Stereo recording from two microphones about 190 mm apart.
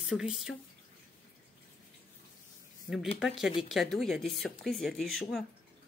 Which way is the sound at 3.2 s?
Centre (ahead or behind).